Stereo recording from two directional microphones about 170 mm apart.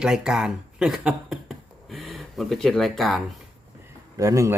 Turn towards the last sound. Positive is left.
turn(degrees=-20)  # may be behind; listen again after turning